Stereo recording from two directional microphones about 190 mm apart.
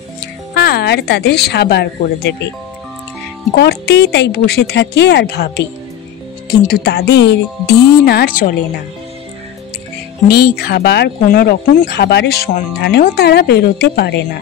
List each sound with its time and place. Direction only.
0.6 s speech: 55° left (ahead or behind)
3.5 s speech: 60° left (ahead or behind)
10.2 s speech: 55° left (ahead or behind)